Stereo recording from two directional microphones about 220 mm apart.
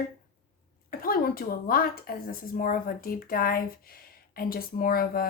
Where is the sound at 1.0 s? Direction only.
40° left (ahead or behind).